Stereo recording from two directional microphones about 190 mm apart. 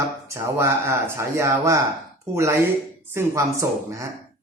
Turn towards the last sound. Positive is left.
turn(degrees=-15)  # may be behind; listen again after turning